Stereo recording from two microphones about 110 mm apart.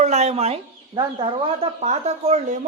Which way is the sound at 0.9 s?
45° right (ahead or behind).